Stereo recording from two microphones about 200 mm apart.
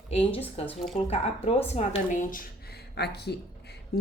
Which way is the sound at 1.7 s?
35° left (ahead or behind).